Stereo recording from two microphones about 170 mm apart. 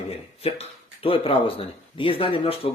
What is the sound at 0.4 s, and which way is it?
Speech, 35° left (ahead or behind).